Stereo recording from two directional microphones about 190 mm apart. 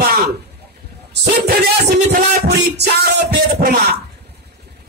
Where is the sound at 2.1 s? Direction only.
55° right (ahead or behind).